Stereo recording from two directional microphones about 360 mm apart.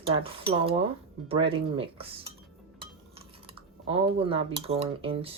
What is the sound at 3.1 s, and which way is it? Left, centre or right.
Cutlery, centre.